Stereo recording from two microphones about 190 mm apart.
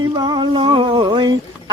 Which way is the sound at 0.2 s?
25° right (ahead or behind).